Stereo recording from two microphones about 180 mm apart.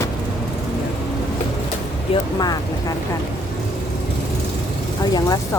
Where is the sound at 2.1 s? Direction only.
20° left (ahead or behind).